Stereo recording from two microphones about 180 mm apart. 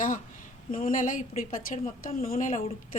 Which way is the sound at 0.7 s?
50° left (ahead or behind).